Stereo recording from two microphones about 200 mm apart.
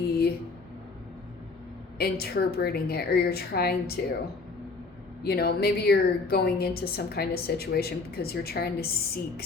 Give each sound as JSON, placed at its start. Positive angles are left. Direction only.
{"t": 0.1, "sound": "a sound", "side_deg": 50}
{"t": 2.0, "sound": "a woman's voice", "side_deg": 50}
{"t": 5.2, "sound": "a woman's voice", "side_deg": 50}